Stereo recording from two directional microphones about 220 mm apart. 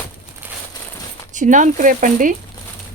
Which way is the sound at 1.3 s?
35° right (ahead or behind).